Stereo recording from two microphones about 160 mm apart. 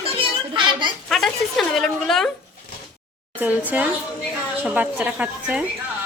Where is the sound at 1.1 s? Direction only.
Centre (ahead or behind).